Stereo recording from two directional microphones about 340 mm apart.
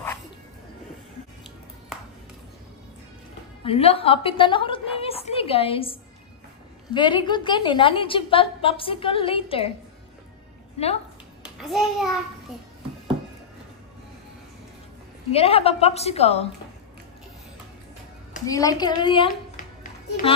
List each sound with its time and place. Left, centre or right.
3.6 s a woman's voice: centre
11.4 s a child's voice: centre
15.3 s a woman's voice: centre
18.5 s a woman's voice: centre